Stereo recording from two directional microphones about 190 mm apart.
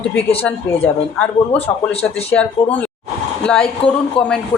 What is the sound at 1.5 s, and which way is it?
Speech, 30° left (ahead or behind).